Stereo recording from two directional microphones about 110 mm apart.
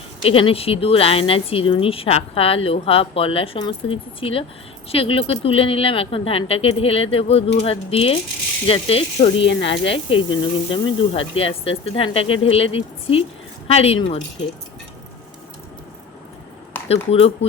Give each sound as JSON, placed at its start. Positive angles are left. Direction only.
{"t": 0.2, "sound": "speech", "side_deg": 55}
{"t": 16.9, "sound": "speech", "side_deg": 65}